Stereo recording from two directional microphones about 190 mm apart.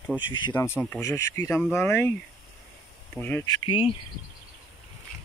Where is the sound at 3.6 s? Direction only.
25° left (ahead or behind).